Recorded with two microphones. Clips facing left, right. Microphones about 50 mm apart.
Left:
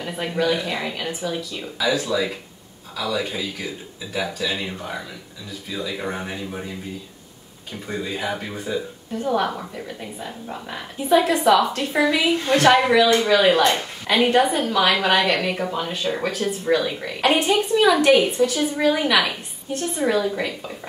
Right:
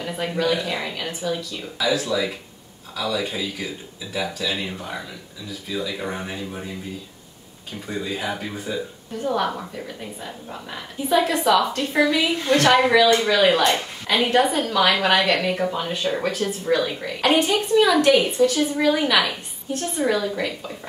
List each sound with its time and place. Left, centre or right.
0.0 s a woman's voice: centre
7.8 s a woman's voice: centre